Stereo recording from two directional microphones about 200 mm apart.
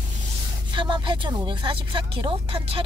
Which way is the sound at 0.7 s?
25° right (ahead or behind).